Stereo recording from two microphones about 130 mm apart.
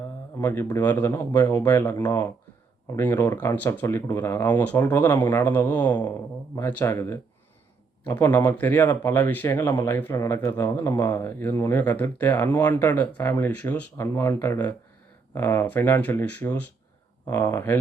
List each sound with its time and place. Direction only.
0.3 s speech: 20° left (ahead or behind)
1.5 s speech: 30° left (ahead or behind)